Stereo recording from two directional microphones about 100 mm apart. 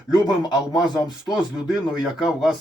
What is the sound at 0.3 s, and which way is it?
Speech, 40° left (ahead or behind).